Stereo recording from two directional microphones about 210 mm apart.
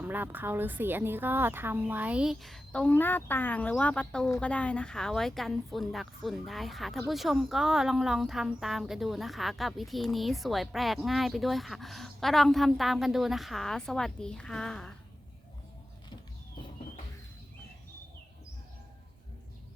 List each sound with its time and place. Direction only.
0.0 s a woman's voice: 10° right (ahead or behind)